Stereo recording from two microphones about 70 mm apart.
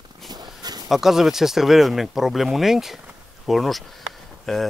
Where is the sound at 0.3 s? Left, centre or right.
Right.